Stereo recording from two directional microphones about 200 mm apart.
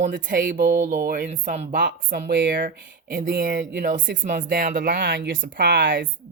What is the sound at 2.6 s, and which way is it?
Speech, 45° right (ahead or behind).